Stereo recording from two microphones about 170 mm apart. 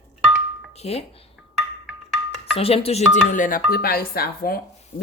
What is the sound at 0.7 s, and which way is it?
Speech, 40° left (ahead or behind).